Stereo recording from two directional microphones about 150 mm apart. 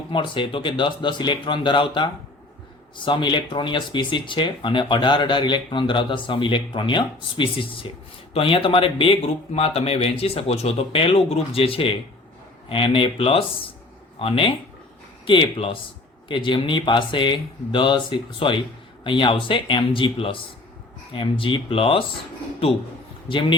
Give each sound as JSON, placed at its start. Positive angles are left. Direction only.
{"t": 0.1, "sound": "speech", "side_deg": 35}
{"t": 23.3, "sound": "speech", "side_deg": 35}